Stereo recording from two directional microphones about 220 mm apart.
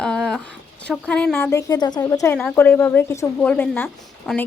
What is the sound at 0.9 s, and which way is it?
Speech, 5° left (ahead or behind).